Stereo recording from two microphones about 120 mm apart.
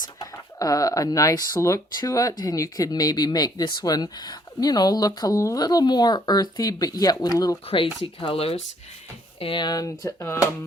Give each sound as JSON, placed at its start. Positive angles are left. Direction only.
{"t": 0.2, "sound": "speech", "side_deg": 30}
{"t": 8.0, "sound": "speech", "side_deg": 50}
{"t": 9.4, "sound": "speech", "side_deg": 45}